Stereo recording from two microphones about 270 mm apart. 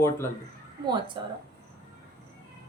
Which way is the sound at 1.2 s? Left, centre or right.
Centre.